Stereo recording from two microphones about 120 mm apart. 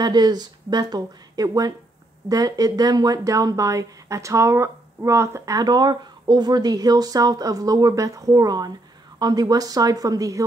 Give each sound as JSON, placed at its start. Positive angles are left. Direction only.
{"t": 0.0, "sound": "speech", "side_deg": -35}